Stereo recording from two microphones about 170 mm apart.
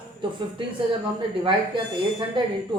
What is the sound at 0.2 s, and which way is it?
Speech, 30° right (ahead or behind).